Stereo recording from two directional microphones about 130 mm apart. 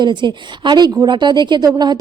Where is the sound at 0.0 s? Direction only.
35° right (ahead or behind).